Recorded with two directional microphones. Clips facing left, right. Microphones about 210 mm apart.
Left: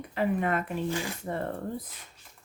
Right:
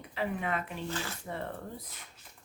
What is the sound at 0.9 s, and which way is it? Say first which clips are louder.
Speech: left 6 dB; 15° left (ahead or behind).